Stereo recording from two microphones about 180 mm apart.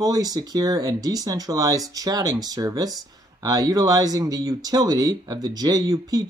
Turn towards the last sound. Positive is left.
turn(degrees=-20)  # may be behind; listen again after turning